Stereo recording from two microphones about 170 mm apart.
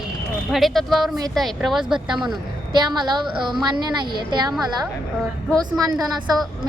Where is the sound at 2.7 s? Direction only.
25° right (ahead or behind).